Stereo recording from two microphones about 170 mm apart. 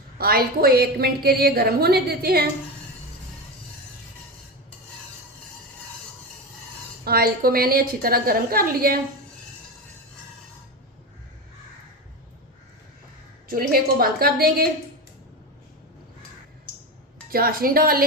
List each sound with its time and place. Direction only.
0.2 s a woman's voice: 65° right (ahead or behind)
7.0 s a woman's voice: 65° right (ahead or behind)
13.5 s a woman's voice: 60° right (ahead or behind)
17.3 s a woman's voice: 60° right (ahead or behind)